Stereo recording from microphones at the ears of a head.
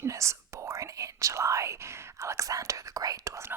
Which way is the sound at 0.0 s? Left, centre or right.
Right.